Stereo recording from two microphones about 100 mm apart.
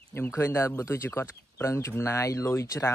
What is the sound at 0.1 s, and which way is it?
Speech, 25° left (ahead or behind).